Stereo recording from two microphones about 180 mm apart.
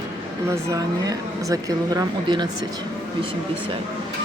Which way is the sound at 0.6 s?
20° right (ahead or behind).